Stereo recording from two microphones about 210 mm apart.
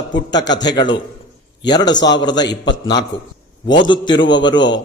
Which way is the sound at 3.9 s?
20° left (ahead or behind).